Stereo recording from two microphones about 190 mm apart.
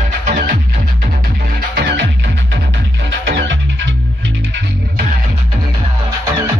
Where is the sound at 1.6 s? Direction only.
60° right (ahead or behind).